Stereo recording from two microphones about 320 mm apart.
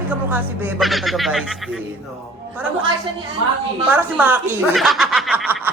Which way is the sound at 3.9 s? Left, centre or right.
Centre.